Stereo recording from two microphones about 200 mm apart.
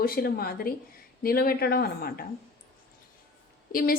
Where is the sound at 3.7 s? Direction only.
45° left (ahead or behind).